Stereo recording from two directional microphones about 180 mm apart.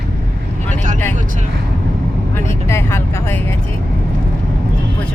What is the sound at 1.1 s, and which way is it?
Speech, 40° right (ahead or behind).